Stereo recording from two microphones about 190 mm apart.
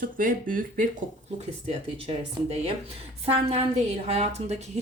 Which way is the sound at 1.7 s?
30° right (ahead or behind).